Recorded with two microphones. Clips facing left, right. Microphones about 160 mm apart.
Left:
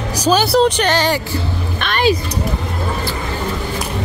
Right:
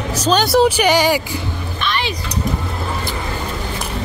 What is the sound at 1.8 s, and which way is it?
Music, 55° left (ahead or behind).